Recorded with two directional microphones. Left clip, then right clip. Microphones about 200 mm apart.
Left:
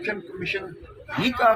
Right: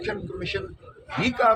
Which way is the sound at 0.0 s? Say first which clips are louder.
Left 1 dB; 15° right (ahead or behind).